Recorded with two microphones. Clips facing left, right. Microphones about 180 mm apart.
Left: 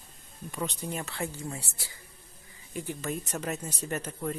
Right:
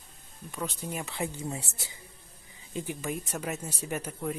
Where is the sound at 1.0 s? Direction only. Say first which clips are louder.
Right 1 dB; 15° right (ahead or behind).